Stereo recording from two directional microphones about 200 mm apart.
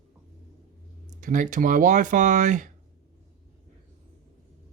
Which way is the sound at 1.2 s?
40° right (ahead or behind).